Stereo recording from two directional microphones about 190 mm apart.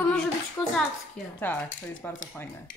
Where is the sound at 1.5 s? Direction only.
5° left (ahead or behind).